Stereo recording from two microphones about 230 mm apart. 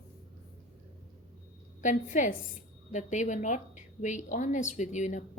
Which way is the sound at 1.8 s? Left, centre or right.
Left.